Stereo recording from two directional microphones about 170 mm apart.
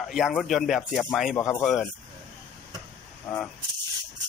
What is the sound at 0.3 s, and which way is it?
Speech, centre (ahead or behind).